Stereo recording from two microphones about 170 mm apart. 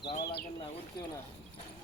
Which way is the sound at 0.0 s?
70° left (ahead or behind).